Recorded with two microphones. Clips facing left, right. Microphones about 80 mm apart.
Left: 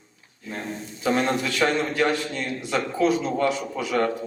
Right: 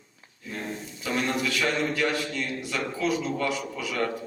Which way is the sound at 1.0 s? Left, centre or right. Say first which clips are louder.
Left 5 dB; left.